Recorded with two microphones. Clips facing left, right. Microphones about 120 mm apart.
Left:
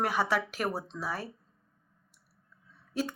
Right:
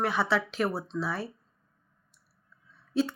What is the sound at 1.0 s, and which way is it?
Speech, 40° left (ahead or behind).